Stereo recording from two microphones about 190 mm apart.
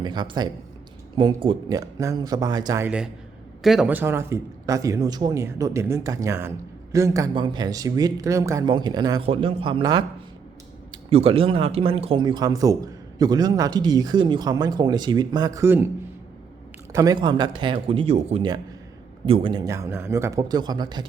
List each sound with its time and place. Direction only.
0.0 s speech: 25° right (ahead or behind)
11.1 s speech: 30° right (ahead or behind); by 15.9 s 10° right (ahead or behind)
16.9 s speech: 20° right (ahead or behind)